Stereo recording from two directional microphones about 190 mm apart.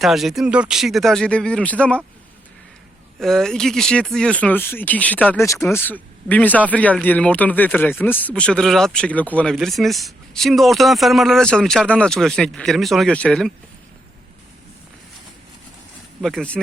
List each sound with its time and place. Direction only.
0.0 s speech: centre (ahead or behind)
3.2 s speech: 5° left (ahead or behind)
16.2 s speech: 5° left (ahead or behind)